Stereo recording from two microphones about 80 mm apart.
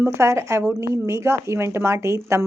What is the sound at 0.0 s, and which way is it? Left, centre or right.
A woman's voice, right.